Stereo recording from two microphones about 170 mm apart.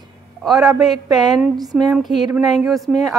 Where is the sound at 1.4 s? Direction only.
Centre (ahead or behind).